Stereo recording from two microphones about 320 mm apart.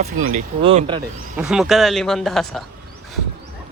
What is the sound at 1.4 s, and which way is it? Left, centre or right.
Speech, centre.